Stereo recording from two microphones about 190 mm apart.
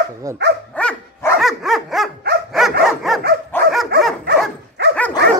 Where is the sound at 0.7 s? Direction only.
5° left (ahead or behind).